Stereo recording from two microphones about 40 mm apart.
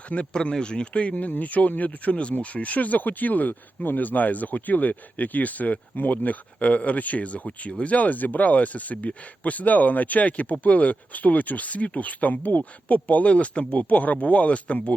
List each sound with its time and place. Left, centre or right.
0.1 s speech: left
0.5 s speech: left